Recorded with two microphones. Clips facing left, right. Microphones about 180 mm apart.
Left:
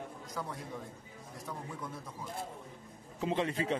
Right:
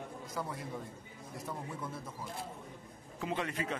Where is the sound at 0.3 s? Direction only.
5° right (ahead or behind).